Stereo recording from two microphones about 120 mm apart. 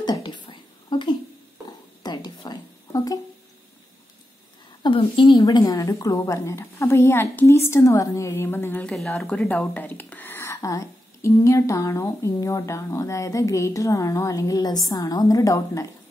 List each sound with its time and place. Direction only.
0.0 s a sound: 40° left (ahead or behind)
4.8 s a woman's voice: 45° left (ahead or behind)
5.4 s speech: 30° left (ahead or behind)
8.8 s speech: 5° left (ahead or behind); by 15.9 s 25° left (ahead or behind)